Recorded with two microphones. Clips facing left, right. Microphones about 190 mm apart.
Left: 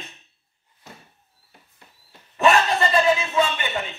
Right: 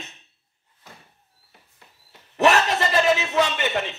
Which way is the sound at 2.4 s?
80° right.